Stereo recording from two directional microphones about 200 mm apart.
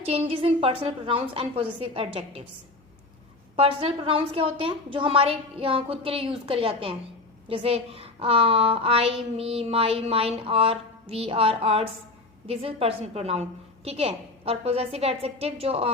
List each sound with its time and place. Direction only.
0.0 s a woman's voice: 30° right (ahead or behind)
3.5 s a woman's voice: 30° right (ahead or behind)